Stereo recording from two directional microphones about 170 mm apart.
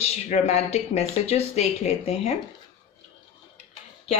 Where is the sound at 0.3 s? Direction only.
40° left (ahead or behind).